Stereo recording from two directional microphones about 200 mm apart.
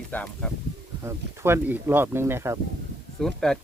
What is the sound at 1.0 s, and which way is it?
A man's voice, 10° right (ahead or behind).